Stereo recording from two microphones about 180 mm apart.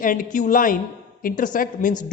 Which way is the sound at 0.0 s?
50° left (ahead or behind).